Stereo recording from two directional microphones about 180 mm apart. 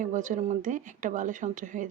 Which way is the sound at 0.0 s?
45° right (ahead or behind).